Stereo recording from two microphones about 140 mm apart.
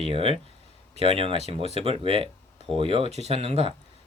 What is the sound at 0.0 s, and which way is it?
Speech, 45° right (ahead or behind).